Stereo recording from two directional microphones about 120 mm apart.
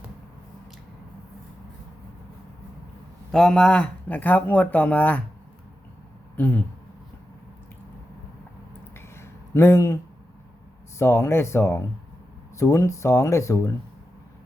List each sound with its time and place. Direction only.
3.3 s speech: 5° left (ahead or behind)
6.3 s speech: 15° left (ahead or behind)
9.0 s a sound: 20° left (ahead or behind)
10.9 s speech: 20° left (ahead or behind)